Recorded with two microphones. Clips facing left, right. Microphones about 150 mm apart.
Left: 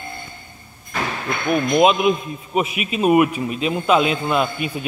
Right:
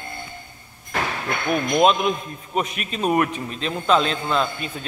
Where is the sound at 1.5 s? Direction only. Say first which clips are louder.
Left 2 dB; 5° left (ahead or behind).